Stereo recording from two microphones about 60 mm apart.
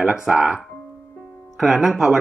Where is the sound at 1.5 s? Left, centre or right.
Centre.